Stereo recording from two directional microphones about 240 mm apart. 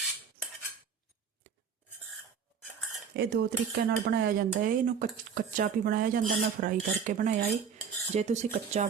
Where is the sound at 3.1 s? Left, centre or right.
Right.